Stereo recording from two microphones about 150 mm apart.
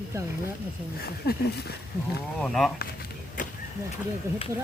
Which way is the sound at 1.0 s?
90° left.